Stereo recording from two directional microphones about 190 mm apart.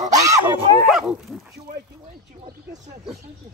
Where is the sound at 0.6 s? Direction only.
30° right (ahead or behind).